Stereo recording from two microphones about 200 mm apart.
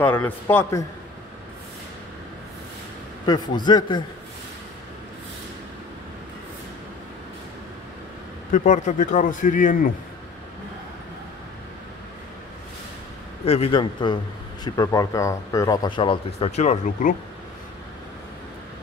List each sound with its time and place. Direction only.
0.0 s a man's voice: 10° left (ahead or behind)
3.3 s speech: 20° left (ahead or behind)
8.5 s a man's voice: 40° left (ahead or behind)
13.5 s speech: 25° left (ahead or behind)